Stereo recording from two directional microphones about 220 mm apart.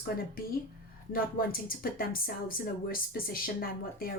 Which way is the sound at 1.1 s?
40° left (ahead or behind).